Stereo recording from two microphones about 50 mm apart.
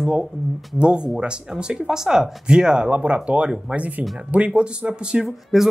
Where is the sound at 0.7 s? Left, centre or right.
Centre.